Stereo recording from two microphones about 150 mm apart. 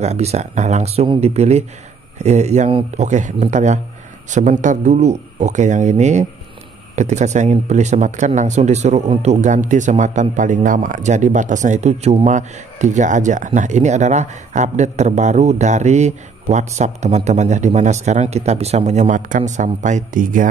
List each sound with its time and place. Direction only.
0.0 s a man's voice: 45° right (ahead or behind); by 20.4 s 60° right (ahead or behind)